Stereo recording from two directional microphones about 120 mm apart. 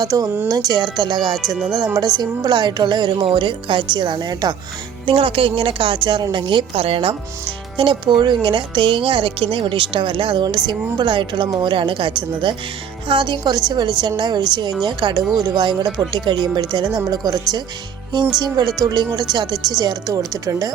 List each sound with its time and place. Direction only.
0.0 s a woman's voice: 30° right (ahead or behind)
5.0 s speech: 45° right (ahead or behind)
7.8 s a woman's voice: 40° right (ahead or behind)